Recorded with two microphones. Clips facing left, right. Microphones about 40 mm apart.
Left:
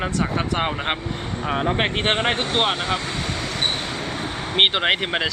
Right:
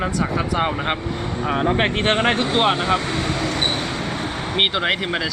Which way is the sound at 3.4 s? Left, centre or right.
Centre.